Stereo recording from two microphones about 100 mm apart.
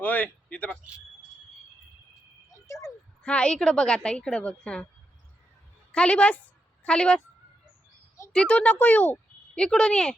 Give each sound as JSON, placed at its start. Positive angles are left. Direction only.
{"t": 0.0, "sound": "speech", "side_deg": 15}
{"t": 2.6, "sound": "a sound", "side_deg": 30}
{"t": 3.2, "sound": "a woman's voice", "side_deg": 10}
{"t": 5.9, "sound": "a woman's voice", "side_deg": 10}
{"t": 8.3, "sound": "a woman's voice", "side_deg": 10}